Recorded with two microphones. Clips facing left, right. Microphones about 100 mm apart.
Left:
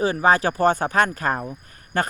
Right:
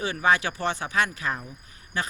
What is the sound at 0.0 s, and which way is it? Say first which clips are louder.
Speech: left 5 dB; 35° left (ahead or behind).